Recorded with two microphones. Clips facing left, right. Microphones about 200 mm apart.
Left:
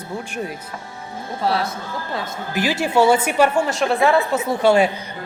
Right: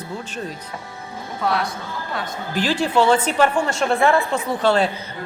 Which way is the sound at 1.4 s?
30° left (ahead or behind).